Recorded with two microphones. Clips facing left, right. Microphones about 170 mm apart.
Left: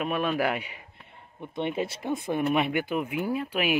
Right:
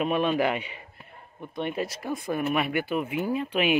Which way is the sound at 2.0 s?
20° left (ahead or behind).